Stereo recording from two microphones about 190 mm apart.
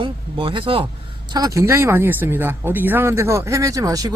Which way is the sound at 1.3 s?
15° right (ahead or behind).